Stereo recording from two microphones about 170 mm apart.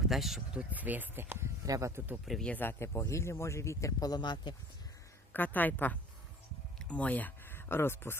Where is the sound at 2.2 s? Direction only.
5° left (ahead or behind); by 4.5 s 25° left (ahead or behind).